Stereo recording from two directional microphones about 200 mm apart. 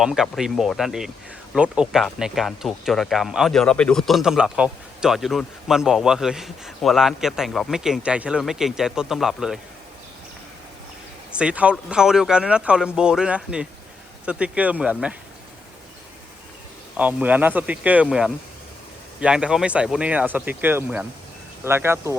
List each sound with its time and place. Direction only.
0.0 s speech: centre (ahead or behind)
11.3 s speech: 5° right (ahead or behind)
17.0 s speech: 5° right (ahead or behind)